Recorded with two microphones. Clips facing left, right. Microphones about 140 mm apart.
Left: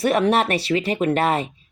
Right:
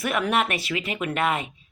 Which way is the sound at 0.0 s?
35° left (ahead or behind).